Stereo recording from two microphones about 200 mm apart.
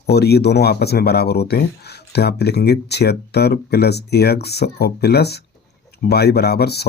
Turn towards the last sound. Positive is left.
turn(degrees=55)  # may be behind; listen again after turning